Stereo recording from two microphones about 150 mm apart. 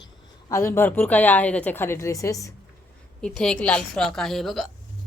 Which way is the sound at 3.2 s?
5° left (ahead or behind).